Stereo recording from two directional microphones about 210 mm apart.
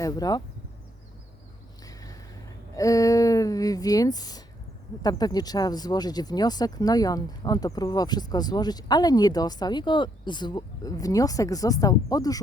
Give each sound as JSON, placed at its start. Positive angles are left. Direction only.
{"t": 0.0, "sound": "speech", "side_deg": 20}
{"t": 1.8, "sound": "a sound", "side_deg": 15}
{"t": 2.7, "sound": "speech", "side_deg": 15}